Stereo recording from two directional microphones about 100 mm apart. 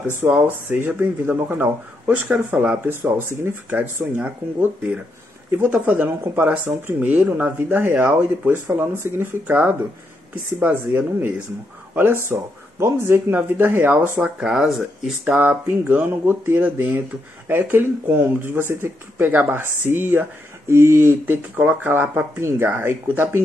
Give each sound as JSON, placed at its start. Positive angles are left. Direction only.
{"t": 0.0, "sound": "speech", "side_deg": -20}
{"t": 15.3, "sound": "speech", "side_deg": -20}